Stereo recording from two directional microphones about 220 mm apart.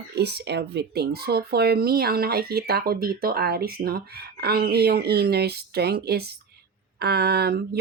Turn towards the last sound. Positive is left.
turn(degrees=-45)  # may be behind; listen again after turning